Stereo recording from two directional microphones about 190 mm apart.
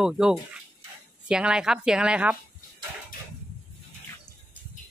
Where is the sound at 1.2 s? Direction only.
5° right (ahead or behind).